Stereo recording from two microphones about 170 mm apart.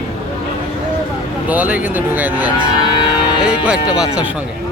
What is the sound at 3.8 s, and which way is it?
Speech, 5° right (ahead or behind).